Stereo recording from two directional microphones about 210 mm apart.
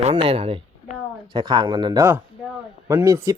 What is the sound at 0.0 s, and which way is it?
Speech, 25° right (ahead or behind).